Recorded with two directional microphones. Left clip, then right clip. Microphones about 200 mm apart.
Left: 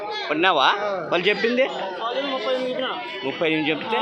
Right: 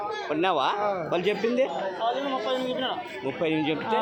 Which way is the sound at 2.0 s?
30° right (ahead or behind).